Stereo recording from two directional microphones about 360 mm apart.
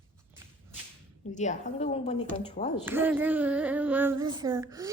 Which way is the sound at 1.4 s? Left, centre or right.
Centre.